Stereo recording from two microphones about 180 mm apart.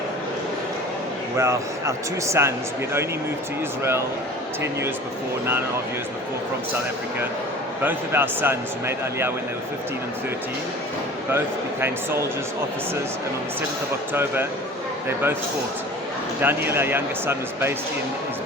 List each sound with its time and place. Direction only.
1.4 s a man's voice: 15° right (ahead or behind)
7.8 s a man's voice: 10° right (ahead or behind)
11.3 s a man's voice: 15° right (ahead or behind)
14.1 s a man's voice: 10° right (ahead or behind)
16.4 s a man's voice: 10° right (ahead or behind)